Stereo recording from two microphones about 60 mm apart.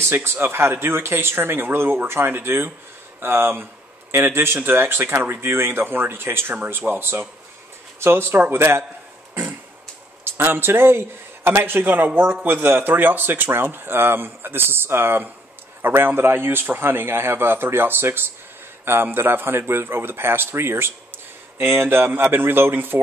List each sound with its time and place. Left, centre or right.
0.1 s speech: right
6.5 s speech: right
6.9 s speech: right
10.2 s a man's voice: right